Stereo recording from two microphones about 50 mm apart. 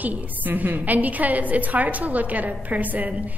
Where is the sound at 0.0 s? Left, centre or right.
Right.